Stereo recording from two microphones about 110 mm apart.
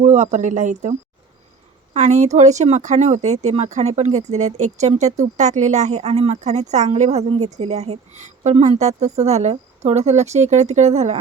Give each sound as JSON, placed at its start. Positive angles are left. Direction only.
{"t": 0.0, "sound": "a woman's voice", "side_deg": -90}